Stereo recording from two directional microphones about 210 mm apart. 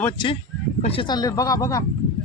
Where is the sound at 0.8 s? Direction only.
25° left (ahead or behind).